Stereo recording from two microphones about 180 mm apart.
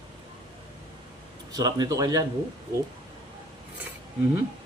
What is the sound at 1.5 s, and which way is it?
Speech, 20° right (ahead or behind).